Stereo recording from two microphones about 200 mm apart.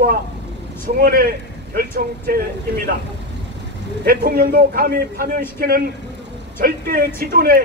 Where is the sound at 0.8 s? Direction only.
45° right (ahead or behind).